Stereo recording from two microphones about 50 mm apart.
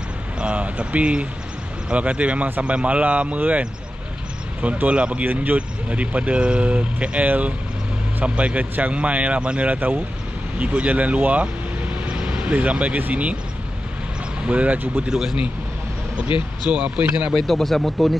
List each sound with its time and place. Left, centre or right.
0.4 s speech: right
4.8 s speech: right
5.2 s speech: right
5.9 s speech: right
14.4 s speech: right
15.0 s speech: centre
16.7 s speech: right
17.4 s speech: centre